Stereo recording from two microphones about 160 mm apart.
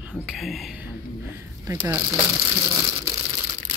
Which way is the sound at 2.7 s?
30° right (ahead or behind).